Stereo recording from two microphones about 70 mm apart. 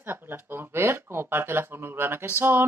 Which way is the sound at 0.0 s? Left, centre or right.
Right.